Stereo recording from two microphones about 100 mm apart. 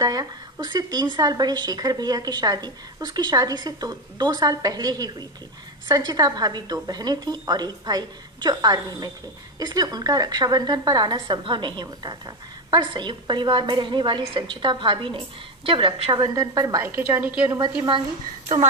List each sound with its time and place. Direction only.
0.0 s a woman's voice: 40° right (ahead or behind); by 16.1 s 60° right (ahead or behind)
16.1 s speech: 35° right (ahead or behind)
16.8 s a woman's voice: 20° right (ahead or behind)
17.6 s a woman's voice: 50° right (ahead or behind)